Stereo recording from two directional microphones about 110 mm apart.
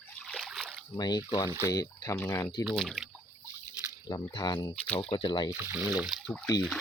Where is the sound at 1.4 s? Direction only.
25° right (ahead or behind).